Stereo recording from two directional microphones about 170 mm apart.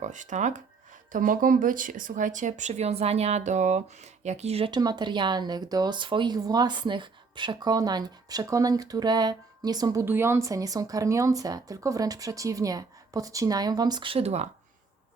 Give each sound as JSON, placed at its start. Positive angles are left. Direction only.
{"t": 0.0, "sound": "speech", "side_deg": -45}
{"t": 4.7, "sound": "speech", "side_deg": -25}